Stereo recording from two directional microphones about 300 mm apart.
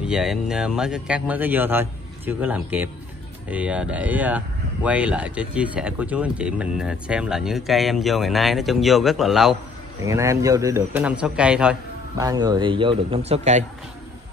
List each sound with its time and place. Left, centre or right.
0.0 s a man's voice: centre; by 13.7 s right